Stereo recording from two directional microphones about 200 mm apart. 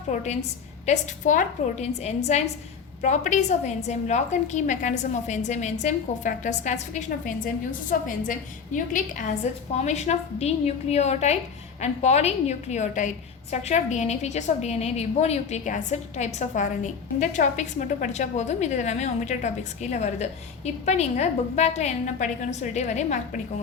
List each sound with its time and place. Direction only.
0.1 s a woman's voice: 35° left (ahead or behind)